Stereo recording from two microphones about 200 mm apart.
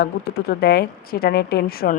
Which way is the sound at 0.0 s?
50° left (ahead or behind).